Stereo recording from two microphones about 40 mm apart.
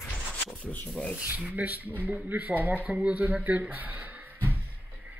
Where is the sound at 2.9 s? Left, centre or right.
Right.